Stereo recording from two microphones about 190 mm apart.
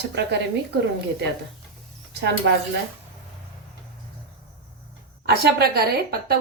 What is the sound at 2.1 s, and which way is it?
Speech, 65° right (ahead or behind).